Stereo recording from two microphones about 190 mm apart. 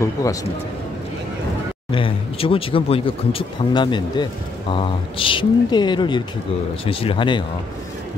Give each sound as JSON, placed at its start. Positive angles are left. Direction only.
{"t": 0.0, "sound": "speech", "side_deg": 15}
{"t": 1.9, "sound": "speech", "side_deg": 30}